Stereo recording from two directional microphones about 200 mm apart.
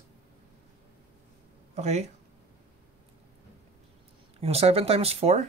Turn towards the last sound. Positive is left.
turn(degrees=-30)  # may be behind; listen again after turning